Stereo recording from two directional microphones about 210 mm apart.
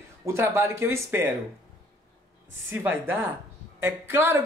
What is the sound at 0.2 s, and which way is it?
Speech, 15° right (ahead or behind).